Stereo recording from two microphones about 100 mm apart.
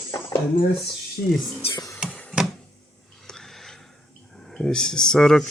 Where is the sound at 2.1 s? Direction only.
15° left (ahead or behind).